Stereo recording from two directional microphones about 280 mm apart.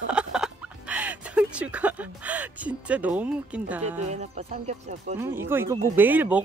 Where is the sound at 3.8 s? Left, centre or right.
Right.